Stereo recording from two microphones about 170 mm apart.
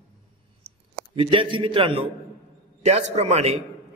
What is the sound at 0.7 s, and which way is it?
Clicking, 35° right (ahead or behind).